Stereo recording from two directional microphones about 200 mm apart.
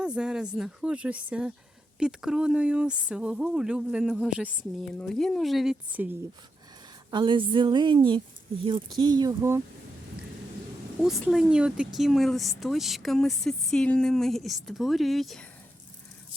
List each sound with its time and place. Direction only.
0.0 s speech: 5° right (ahead or behind)
7.1 s a woman's voice: 25° right (ahead or behind)
11.0 s speech: centre (ahead or behind)